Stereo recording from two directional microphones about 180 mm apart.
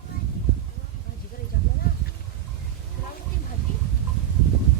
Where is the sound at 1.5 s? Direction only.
60° left (ahead or behind).